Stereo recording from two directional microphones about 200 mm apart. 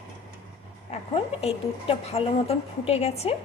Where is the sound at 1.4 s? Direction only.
30° left (ahead or behind).